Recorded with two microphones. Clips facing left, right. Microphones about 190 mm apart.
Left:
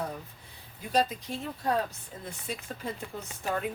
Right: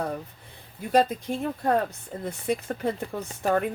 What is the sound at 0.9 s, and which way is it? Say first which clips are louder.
Speech: right 6 dB; 50° right (ahead or behind).